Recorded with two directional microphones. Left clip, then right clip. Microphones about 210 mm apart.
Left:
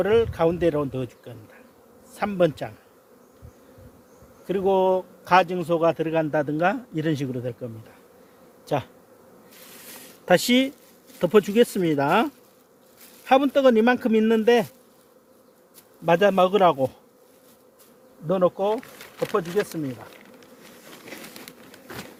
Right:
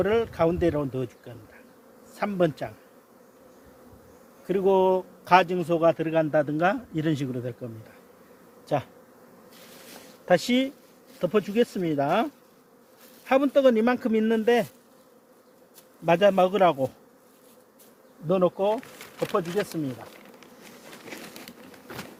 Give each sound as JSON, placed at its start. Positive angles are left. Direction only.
{"t": 0.0, "sound": "speech", "side_deg": 20}
{"t": 4.4, "sound": "speech", "side_deg": 15}
{"t": 8.6, "sound": "speech", "side_deg": 30}
{"t": 10.2, "sound": "speech", "side_deg": 45}
{"t": 13.2, "sound": "speech", "side_deg": 35}
{"t": 16.0, "sound": "speech", "side_deg": 25}
{"t": 18.3, "sound": "speech", "side_deg": 20}